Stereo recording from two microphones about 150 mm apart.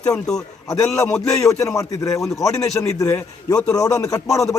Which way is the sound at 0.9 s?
10° left (ahead or behind).